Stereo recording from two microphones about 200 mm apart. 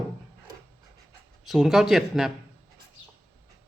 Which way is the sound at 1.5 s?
Centre (ahead or behind).